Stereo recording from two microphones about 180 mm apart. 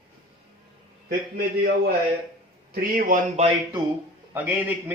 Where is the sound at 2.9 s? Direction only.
50° right (ahead or behind).